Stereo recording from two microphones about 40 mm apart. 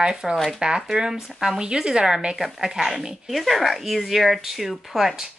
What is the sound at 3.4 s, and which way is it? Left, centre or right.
Speech, centre.